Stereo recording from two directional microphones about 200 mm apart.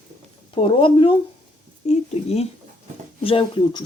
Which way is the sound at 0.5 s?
25° left (ahead or behind).